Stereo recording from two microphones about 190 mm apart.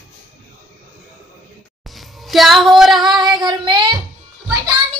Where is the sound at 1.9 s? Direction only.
Centre (ahead or behind).